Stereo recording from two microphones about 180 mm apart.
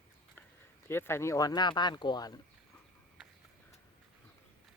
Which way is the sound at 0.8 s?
15° left (ahead or behind).